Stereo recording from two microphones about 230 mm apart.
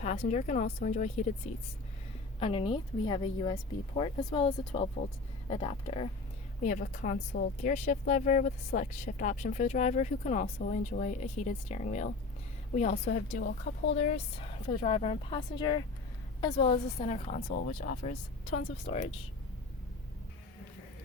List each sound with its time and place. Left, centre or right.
0.0 s a woman's voice: left